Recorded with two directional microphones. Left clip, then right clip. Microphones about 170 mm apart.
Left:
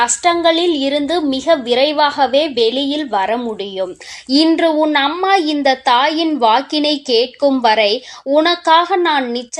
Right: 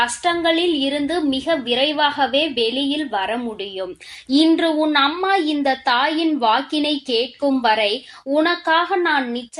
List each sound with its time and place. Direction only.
0.0 s a woman's voice: 25° left (ahead or behind)